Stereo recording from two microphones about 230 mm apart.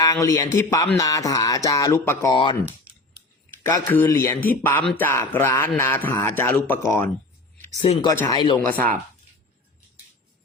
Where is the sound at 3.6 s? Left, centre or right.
Centre.